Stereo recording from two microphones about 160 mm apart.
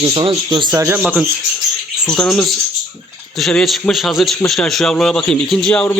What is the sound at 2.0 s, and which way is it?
Speech, centre (ahead or behind).